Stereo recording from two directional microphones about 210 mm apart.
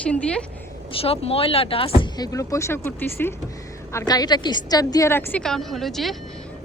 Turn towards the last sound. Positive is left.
turn(degrees=0)  # may be behind; listen again after turning